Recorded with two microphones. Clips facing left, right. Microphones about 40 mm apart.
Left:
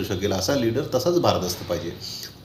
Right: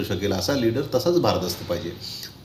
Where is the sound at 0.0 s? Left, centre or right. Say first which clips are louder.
Even; centre.